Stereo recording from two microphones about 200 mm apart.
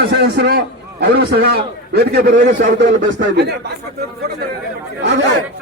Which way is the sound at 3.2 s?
55° right (ahead or behind).